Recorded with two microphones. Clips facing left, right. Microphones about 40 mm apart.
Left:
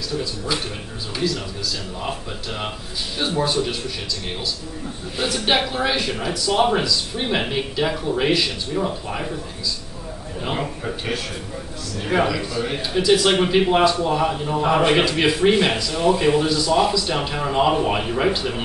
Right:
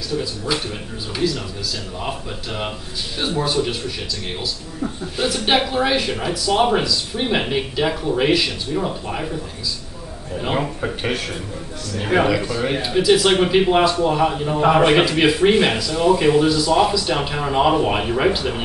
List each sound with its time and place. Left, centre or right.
1.1 s speech: centre
5.1 s speech: centre
10.4 s a man's voice: centre
12.1 s a man's voice: centre
12.9 s a man's voice: centre
15.7 s a man's voice: centre